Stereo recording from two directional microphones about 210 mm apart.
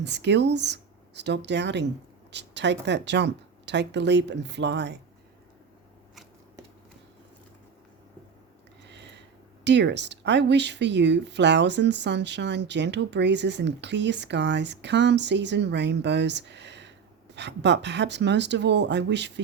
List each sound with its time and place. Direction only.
0.0 s speech: 55° right (ahead or behind)
8.9 s a sound: 55° right (ahead or behind)
9.6 s speech: 55° right (ahead or behind)